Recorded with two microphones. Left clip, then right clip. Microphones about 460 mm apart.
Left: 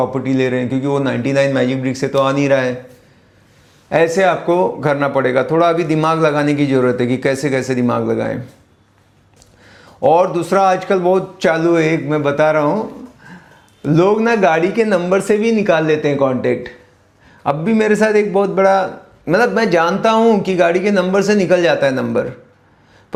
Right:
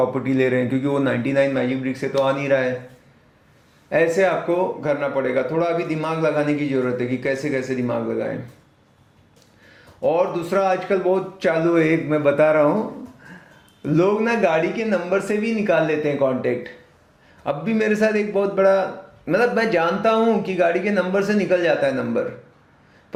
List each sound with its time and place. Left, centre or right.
0.1 s a man's voice: centre
3.8 s a man's voice: left
9.6 s a man's voice: left; by 12.8 s centre
13.8 s a man's voice: left